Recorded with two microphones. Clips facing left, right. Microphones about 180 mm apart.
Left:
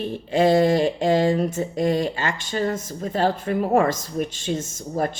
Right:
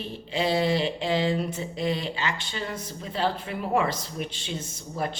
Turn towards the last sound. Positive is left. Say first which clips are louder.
# left 6 dB
turn(degrees=45)  # may be behind; listen again after turning